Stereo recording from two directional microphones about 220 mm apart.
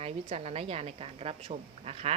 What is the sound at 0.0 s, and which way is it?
Speech, 30° right (ahead or behind).